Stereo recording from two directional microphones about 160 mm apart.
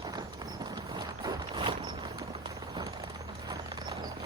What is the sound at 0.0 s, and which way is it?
Clip-clop, 25° right (ahead or behind).